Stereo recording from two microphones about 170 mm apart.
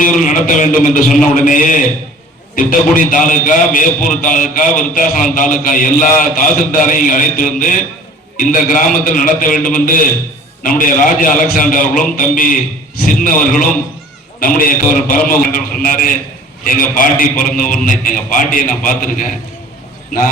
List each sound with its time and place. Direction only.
0.0 s a man's voice: 50° left (ahead or behind)